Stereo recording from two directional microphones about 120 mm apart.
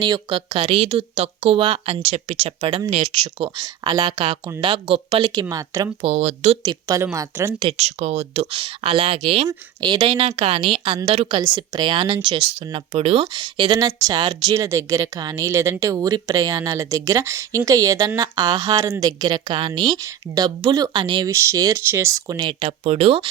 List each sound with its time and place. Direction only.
0.0 s speech: 40° right (ahead or behind)
5.3 s a woman's voice: 30° right (ahead or behind)
6.1 s speech: 70° right (ahead or behind)
6.6 s a woman's voice: 35° right (ahead or behind)
7.0 s speech: 25° right (ahead or behind)
7.6 s speech: 60° right (ahead or behind)
9.5 s speech: 35° right (ahead or behind); by 13.2 s 55° right (ahead or behind)
13.2 s a woman's voice: 40° right (ahead or behind)
21.2 s speech: 25° right (ahead or behind)
22.8 s speech: 60° right (ahead or behind)